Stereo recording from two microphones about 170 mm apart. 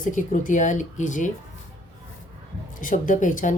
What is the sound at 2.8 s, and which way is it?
Speech, 50° left (ahead or behind).